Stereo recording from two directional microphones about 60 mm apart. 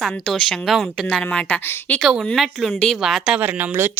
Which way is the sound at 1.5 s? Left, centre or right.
Left.